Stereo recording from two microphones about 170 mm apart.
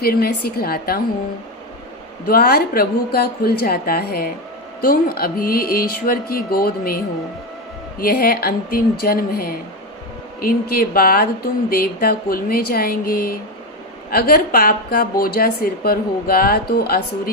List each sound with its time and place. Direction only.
0.0 s a woman's voice: 65° left (ahead or behind)
2.2 s a woman's voice: 65° left (ahead or behind)